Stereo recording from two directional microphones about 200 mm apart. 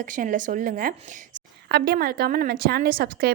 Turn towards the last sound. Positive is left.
turn(degrees=-50)  # may be behind; listen again after turning